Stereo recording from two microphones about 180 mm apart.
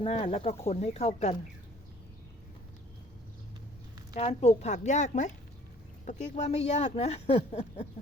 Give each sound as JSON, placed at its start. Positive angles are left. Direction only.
{"t": 0.0, "sound": "speech", "side_deg": 35}
{"t": 4.1, "sound": "speech", "side_deg": 35}